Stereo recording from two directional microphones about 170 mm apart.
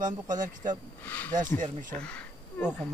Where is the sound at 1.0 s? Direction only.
10° left (ahead or behind).